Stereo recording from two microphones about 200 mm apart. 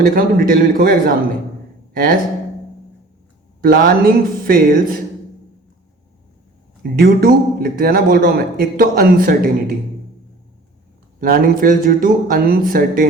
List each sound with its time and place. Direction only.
0.1 s a man's voice: 45° right (ahead or behind)
3.6 s a man's voice: 50° right (ahead or behind)
7.0 s a man's voice: 50° right (ahead or behind)
11.2 s a man's voice: 45° right (ahead or behind)